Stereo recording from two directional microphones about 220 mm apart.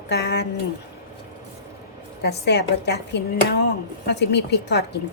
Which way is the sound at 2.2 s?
50° left (ahead or behind).